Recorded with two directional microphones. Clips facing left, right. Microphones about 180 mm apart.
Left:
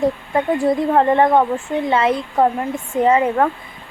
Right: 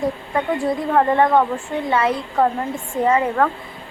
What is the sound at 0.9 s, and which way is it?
Speech, 25° left (ahead or behind).